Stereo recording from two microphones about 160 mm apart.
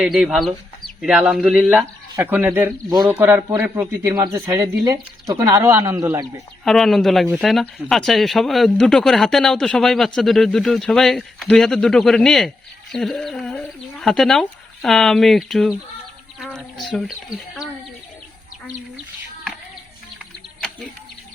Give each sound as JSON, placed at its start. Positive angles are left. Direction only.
{"t": 0.0, "sound": "speech", "side_deg": -5}
{"t": 6.7, "sound": "speech", "side_deg": 0}